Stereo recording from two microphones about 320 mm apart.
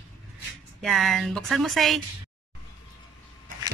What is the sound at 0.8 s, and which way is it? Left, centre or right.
A woman's voice, centre.